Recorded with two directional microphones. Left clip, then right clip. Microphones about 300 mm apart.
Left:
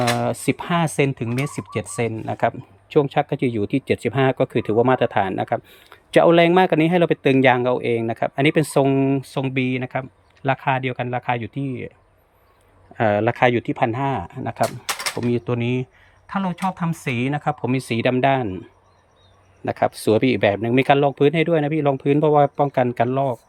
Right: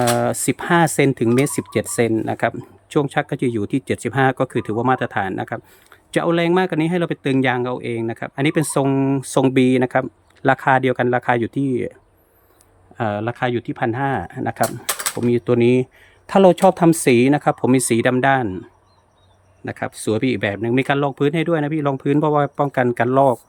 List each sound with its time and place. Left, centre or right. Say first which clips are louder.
0.0 s speech: right 3 dB; centre
13.0 s speech: left 5 dB; centre
19.6 s speech: left 5 dB; centre